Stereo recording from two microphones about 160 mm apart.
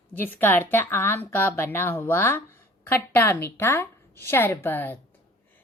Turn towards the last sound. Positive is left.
turn(degrees=10)  # may be behind; listen again after turning